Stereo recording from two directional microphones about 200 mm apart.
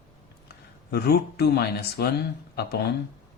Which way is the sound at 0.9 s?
55° left (ahead or behind).